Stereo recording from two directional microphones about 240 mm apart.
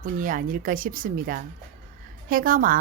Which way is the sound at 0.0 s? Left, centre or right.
Right.